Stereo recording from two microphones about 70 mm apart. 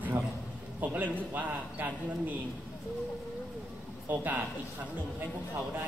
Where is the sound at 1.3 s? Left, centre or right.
Right.